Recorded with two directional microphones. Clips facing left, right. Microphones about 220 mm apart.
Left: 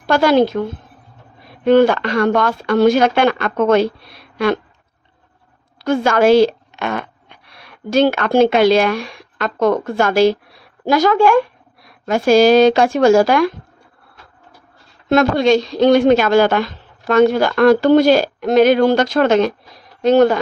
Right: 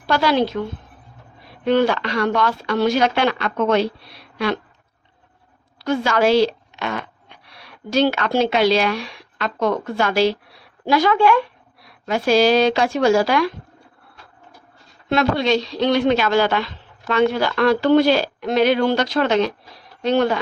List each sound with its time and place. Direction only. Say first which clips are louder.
0.1 s speech: left 5 dB; 50° left (ahead or behind)
1.6 s speech: left 6 dB; 50° left (ahead or behind)
5.8 s a woman's voice: left 4 dB; 50° left (ahead or behind)
15.1 s speech: left 5 dB; 45° left (ahead or behind)